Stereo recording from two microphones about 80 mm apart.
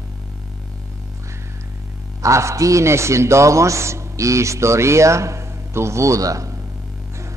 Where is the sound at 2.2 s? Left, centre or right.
Right.